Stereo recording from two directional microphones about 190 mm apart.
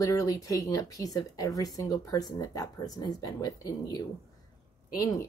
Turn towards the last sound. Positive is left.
turn(degrees=20)  # may be behind; listen again after turning